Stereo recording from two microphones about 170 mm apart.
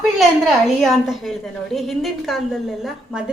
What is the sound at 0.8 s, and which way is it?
A woman's voice, centre (ahead or behind).